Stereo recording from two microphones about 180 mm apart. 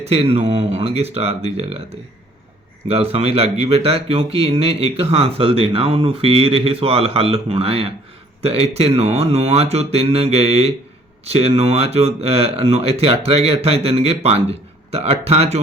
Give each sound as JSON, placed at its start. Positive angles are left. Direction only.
{"t": 0.0, "sound": "speech", "side_deg": -35}
{"t": 2.8, "sound": "speech", "side_deg": -35}